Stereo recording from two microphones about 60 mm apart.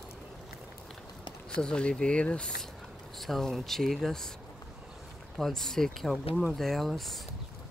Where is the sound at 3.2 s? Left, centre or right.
Centre.